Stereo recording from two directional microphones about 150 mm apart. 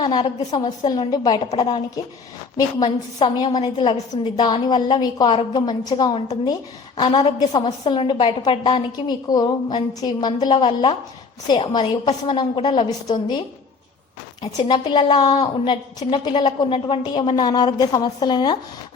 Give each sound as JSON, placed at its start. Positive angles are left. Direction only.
{"t": 0.0, "sound": "a woman's voice", "side_deg": 30}
{"t": 7.3, "sound": "a woman's voice", "side_deg": 30}
{"t": 14.4, "sound": "a woman's voice", "side_deg": 30}